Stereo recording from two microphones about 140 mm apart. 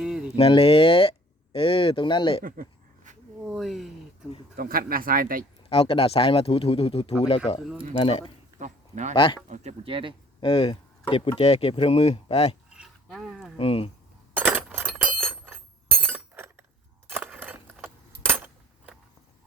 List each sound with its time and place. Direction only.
0.0 s a sound: 5° right (ahead or behind)
0.3 s speech: 40° left (ahead or behind)
2.4 s a sound: 80° right
3.4 s speech: centre (ahead or behind)
4.5 s speech: 90° right
5.6 s speech: 45° left (ahead or behind)
8.5 s a sound: 60° right (ahead or behind)
9.5 s speech: 60° right (ahead or behind)
9.8 s speech: 40° right (ahead or behind)
10.4 s speech: 40° left (ahead or behind)
12.7 s a sound: 5° right (ahead or behind)
13.6 s speech: 40° left (ahead or behind)
14.3 s glass: 15° right (ahead or behind)
17.1 s keys jangling: 15° right (ahead or behind)